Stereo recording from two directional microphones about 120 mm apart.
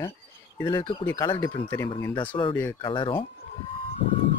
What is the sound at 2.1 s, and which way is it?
Speech, 45° left (ahead or behind).